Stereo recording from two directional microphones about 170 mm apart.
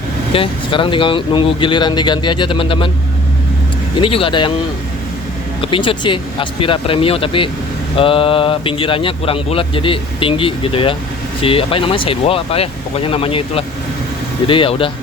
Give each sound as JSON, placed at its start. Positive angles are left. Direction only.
{"t": 0.3, "sound": "speech", "side_deg": 30}
{"t": 4.0, "sound": "speech", "side_deg": 30}
{"t": 5.7, "sound": "speech", "side_deg": 30}